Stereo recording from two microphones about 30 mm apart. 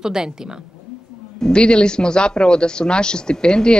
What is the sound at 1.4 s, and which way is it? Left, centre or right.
Speech, left.